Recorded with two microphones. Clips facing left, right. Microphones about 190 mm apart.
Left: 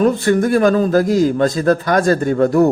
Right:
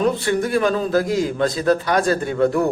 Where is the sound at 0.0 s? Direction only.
45° left (ahead or behind).